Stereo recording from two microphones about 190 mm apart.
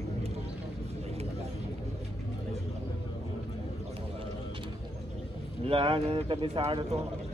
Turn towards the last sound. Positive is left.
turn(degrees=-30)  # may be behind; listen again after turning